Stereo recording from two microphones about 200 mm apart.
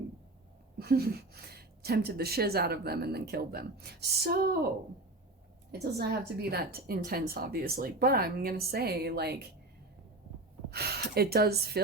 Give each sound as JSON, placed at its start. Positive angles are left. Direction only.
{"t": 0.8, "sound": "a woman's voice", "side_deg": -50}
{"t": 6.0, "sound": "a woman's voice", "side_deg": -50}
{"t": 10.7, "sound": "a woman's voice", "side_deg": -55}